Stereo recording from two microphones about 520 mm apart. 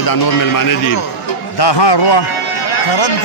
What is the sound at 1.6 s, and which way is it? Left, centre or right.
Speech, left.